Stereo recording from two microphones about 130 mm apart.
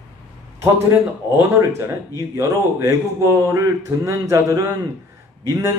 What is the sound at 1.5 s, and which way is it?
A man's voice, 20° right (ahead or behind).